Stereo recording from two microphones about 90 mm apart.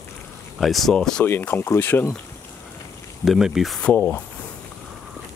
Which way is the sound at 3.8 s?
10° left (ahead or behind).